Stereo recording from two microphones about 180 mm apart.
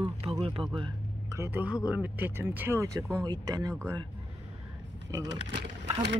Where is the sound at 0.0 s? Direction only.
30° right (ahead or behind).